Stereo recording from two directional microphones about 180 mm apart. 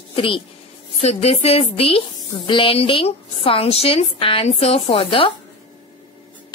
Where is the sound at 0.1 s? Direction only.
30° left (ahead or behind).